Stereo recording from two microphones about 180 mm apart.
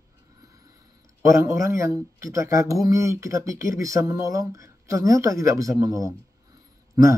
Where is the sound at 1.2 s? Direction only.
15° right (ahead or behind).